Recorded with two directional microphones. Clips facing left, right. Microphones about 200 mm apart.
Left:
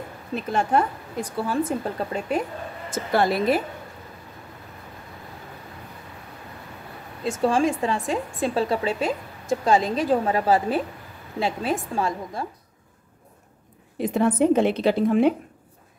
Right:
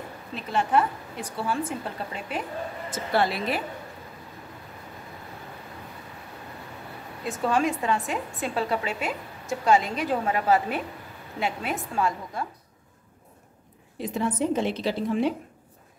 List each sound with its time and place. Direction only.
0.3 s a woman's voice: 45° left (ahead or behind)
7.4 s a woman's voice: 30° left (ahead or behind)
13.9 s a woman's voice: 55° left (ahead or behind)